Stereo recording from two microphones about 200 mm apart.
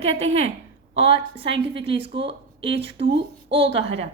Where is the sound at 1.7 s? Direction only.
25° right (ahead or behind).